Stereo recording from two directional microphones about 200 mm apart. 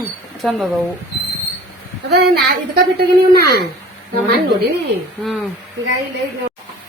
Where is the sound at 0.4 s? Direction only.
Centre (ahead or behind).